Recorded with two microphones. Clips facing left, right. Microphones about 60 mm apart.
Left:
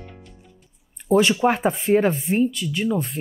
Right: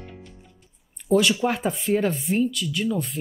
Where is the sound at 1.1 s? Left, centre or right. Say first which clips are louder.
Left 3 dB; left.